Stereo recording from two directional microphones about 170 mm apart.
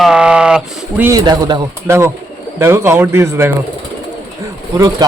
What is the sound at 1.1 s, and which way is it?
A man's voice, 20° right (ahead or behind).